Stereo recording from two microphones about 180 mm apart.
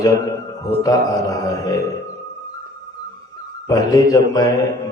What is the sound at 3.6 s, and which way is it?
Speech, 20° left (ahead or behind).